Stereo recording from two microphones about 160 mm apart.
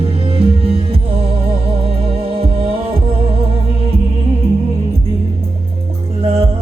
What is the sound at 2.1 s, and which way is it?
Music, 35° right (ahead or behind).